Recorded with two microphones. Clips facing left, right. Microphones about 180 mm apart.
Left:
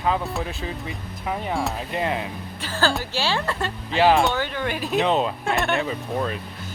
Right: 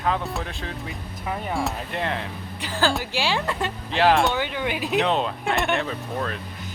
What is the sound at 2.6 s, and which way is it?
Speech, 15° right (ahead or behind).